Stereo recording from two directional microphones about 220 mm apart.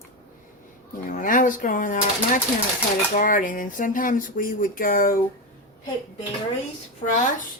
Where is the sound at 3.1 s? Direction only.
35° left (ahead or behind).